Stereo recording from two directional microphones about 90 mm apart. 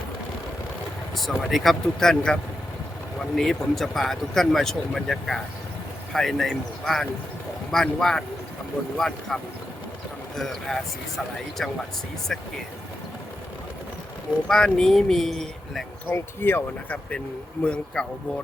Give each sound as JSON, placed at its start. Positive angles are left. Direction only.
{"t": 1.1, "sound": "speech", "side_deg": 5}
{"t": 14.4, "sound": "speech", "side_deg": 5}
{"t": 16.0, "sound": "speech", "side_deg": 25}